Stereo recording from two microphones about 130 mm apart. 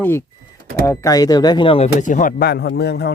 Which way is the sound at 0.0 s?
20° left (ahead or behind).